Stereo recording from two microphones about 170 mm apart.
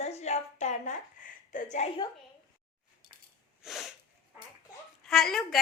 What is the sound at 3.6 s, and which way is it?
Sneeze, centre (ahead or behind).